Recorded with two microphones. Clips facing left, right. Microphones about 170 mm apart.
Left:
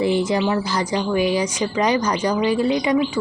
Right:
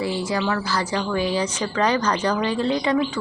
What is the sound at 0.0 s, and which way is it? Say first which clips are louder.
Speech: left 5 dB; 20° left (ahead or behind).